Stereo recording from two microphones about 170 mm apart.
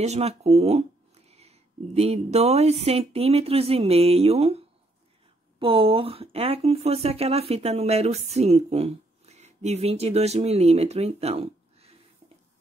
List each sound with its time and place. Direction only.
0.0 s speech: 40° right (ahead or behind)